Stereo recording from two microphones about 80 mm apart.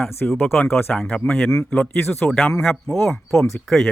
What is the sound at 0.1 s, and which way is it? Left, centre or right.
Speech, left.